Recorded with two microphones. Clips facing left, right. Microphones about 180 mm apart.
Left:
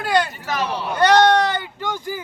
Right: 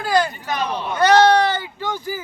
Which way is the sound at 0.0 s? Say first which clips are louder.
Right 1 dB; centre (ahead or behind).